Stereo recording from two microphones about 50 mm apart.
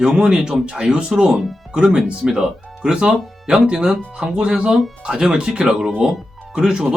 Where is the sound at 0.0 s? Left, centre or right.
Centre.